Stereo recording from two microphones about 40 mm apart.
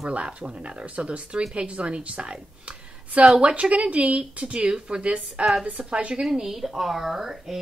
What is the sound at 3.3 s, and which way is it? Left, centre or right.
Speech, right.